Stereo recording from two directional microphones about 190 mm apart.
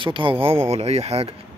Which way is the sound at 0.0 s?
25° right (ahead or behind).